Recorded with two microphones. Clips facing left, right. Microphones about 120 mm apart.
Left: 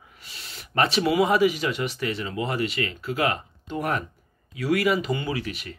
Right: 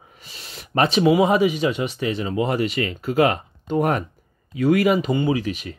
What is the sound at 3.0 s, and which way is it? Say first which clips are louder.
Speech: right 8 dB; 45° right (ahead or behind).